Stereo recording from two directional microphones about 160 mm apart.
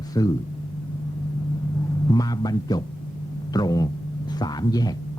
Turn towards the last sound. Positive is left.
turn(degrees=25)  # may be behind; listen again after turning